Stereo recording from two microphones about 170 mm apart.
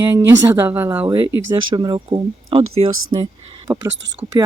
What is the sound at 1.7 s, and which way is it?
Speech, 25° right (ahead or behind).